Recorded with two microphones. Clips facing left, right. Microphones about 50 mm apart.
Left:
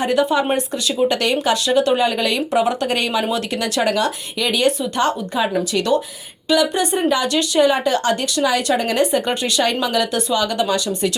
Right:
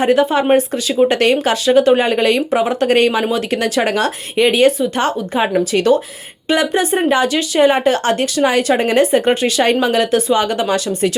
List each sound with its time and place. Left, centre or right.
0.0 s speech: right